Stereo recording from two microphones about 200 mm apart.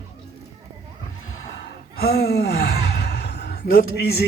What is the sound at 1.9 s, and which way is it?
Sigh, 50° left (ahead or behind).